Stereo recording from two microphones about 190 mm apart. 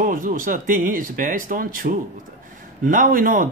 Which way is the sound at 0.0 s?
45° right (ahead or behind).